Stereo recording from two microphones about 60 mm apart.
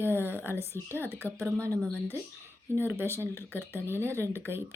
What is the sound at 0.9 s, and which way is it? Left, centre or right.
Speech, left.